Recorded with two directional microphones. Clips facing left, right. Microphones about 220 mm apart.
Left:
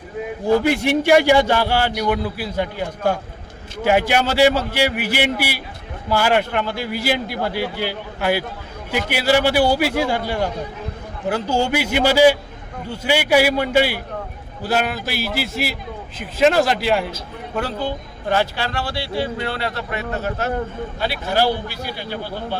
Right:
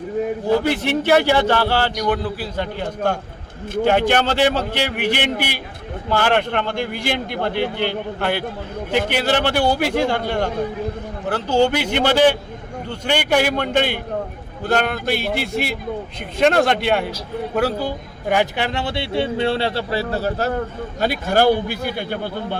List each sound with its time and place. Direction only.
0.4 s a man's voice: 10° left (ahead or behind); by 20.5 s 35° right (ahead or behind)
21.0 s a man's voice: 45° right (ahead or behind)